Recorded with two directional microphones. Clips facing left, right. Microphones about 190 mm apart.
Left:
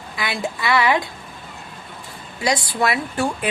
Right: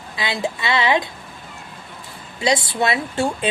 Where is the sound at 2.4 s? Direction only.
25° right (ahead or behind).